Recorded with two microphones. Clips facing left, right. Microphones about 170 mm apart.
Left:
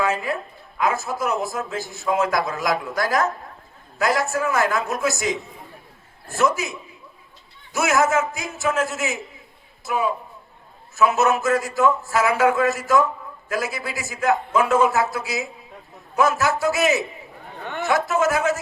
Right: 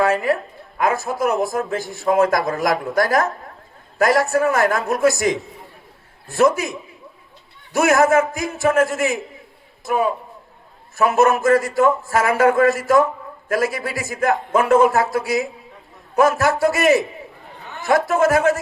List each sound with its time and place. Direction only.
0.0 s a woman's voice: 55° right (ahead or behind)
7.7 s a man's voice: 55° right (ahead or behind)
17.6 s a sound: 65° left (ahead or behind)
17.8 s a man's voice: 55° right (ahead or behind)